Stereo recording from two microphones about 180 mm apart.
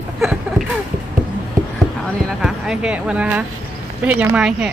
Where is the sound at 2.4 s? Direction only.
5° right (ahead or behind).